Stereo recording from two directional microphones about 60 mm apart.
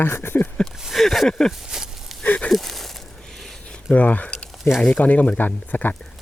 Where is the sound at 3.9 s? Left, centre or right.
Left.